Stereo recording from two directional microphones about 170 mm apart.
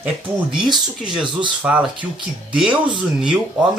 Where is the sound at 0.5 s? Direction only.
5° right (ahead or behind).